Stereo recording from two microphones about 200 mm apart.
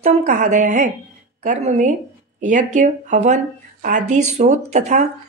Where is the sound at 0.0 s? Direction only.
35° right (ahead or behind).